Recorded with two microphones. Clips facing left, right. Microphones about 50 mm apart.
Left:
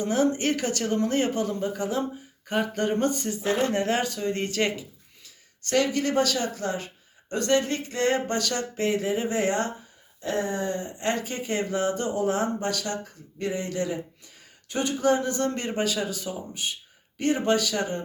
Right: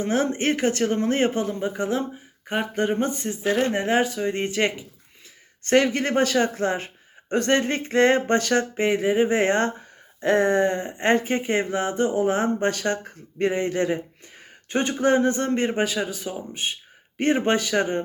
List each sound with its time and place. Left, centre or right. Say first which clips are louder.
0.0 s speech: right 1 dB; right
5.6 s speech: right 4 dB; right